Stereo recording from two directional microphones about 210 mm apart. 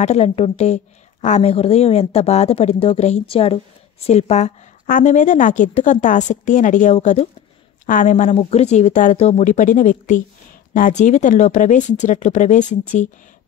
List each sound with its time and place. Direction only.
0.0 s a woman's voice: 30° left (ahead or behind)